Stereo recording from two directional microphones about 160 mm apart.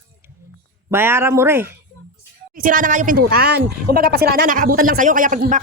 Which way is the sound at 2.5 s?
55° right (ahead or behind).